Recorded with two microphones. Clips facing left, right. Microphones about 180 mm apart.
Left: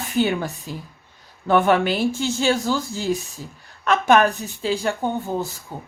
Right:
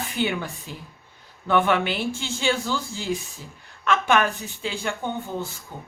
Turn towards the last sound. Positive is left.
turn(degrees=40)  # may be behind; listen again after turning